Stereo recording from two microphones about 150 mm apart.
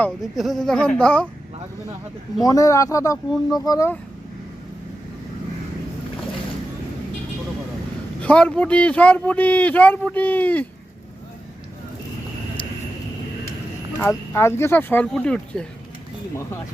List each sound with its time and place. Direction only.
0.2 s speech: centre (ahead or behind)
2.4 s speech: 25° left (ahead or behind)
8.2 s speech: 10° left (ahead or behind)
14.0 s speech: 15° left (ahead or behind)
16.3 s speech: 15° left (ahead or behind)